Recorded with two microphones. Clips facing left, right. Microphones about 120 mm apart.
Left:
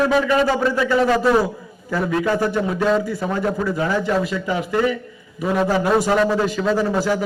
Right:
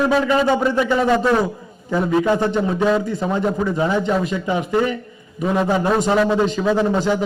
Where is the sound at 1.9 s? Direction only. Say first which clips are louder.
Right 3 dB; 20° right (ahead or behind).